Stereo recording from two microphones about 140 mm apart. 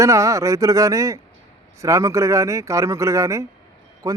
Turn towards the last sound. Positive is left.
turn(degrees=-25)  # may be behind; listen again after turning